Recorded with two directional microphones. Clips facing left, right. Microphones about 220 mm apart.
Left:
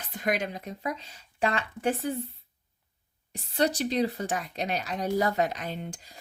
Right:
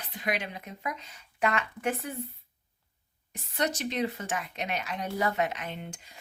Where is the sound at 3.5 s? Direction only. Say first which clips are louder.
Left 5 dB; 35° left (ahead or behind).